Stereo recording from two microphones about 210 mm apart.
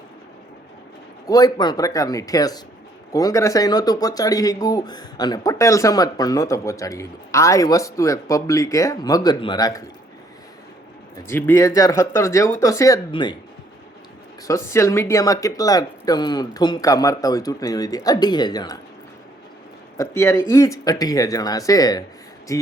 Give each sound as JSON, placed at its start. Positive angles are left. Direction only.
{"t": 1.3, "sound": "speech", "side_deg": 15}
{"t": 11.3, "sound": "speech", "side_deg": 10}
{"t": 14.4, "sound": "speech", "side_deg": 15}
{"t": 20.0, "sound": "speech", "side_deg": 15}